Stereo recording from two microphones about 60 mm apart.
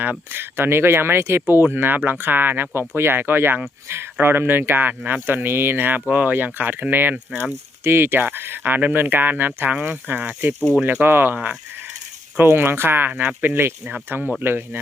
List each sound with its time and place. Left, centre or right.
0.0 s speech: right
12.4 s speech: right